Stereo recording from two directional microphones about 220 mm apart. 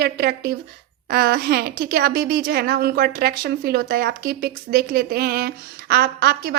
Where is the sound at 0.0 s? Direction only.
45° right (ahead or behind).